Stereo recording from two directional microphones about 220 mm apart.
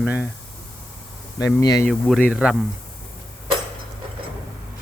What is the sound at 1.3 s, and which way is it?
Speech, 15° left (ahead or behind).